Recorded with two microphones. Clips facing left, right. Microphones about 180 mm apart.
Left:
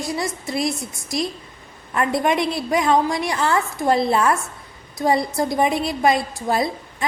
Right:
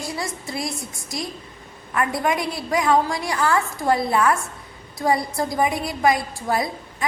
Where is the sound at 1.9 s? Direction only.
25° left (ahead or behind).